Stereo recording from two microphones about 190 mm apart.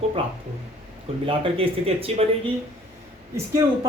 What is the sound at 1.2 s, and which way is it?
Speech, 30° right (ahead or behind).